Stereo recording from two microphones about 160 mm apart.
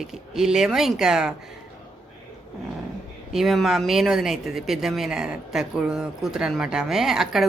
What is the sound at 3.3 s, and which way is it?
Speech, centre (ahead or behind).